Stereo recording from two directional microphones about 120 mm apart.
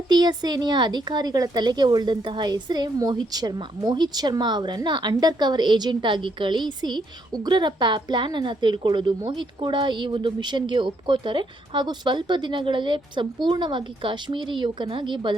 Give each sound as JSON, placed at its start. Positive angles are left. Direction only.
{"t": 0.1, "sound": "a woman's voice", "side_deg": -35}